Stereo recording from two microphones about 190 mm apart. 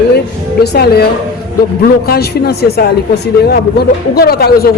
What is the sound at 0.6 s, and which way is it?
Speech, 60° left (ahead or behind).